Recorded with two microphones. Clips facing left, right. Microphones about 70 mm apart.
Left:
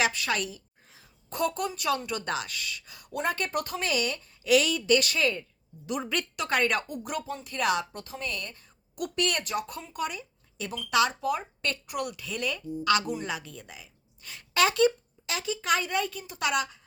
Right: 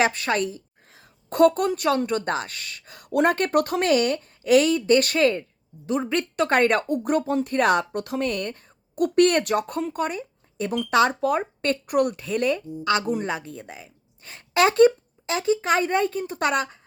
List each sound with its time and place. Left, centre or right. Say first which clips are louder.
0.0 s a woman's voice: right 6 dB; right
8.0 s a woman's voice: right 10 dB; right